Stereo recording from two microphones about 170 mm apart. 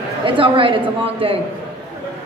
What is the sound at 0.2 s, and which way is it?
A woman's voice, 30° right (ahead or behind).